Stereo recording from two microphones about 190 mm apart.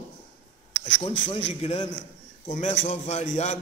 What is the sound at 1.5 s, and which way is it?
A man's voice, 30° left (ahead or behind).